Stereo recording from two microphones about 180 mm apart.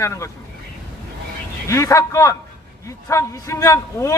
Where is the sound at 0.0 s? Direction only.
15° left (ahead or behind).